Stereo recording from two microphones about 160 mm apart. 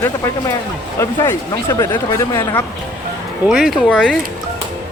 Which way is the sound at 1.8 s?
20° left (ahead or behind).